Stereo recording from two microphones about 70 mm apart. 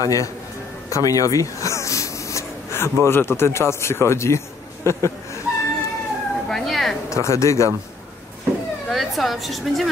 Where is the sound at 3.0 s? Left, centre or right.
Left.